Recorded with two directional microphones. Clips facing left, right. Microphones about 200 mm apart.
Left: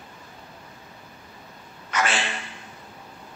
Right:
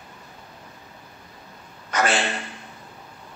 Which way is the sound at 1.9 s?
40° right (ahead or behind).